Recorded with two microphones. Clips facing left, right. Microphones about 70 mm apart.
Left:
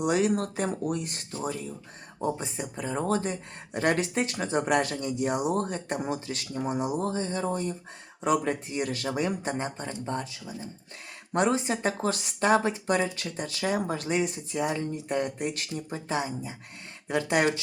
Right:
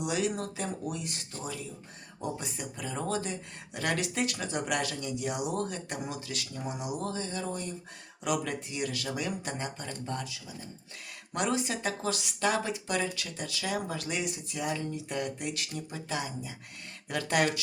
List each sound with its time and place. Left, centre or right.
0.0 s speech: left
17.1 s speech: left